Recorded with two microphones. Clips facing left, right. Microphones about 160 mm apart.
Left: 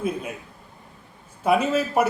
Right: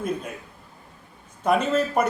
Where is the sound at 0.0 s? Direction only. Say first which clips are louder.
Left 1 dB; 5° left (ahead or behind).